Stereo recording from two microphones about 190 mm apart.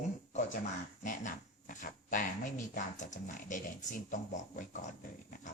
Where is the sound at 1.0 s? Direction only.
40° left (ahead or behind).